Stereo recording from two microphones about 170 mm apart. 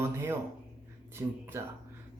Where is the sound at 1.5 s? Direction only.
15° right (ahead or behind).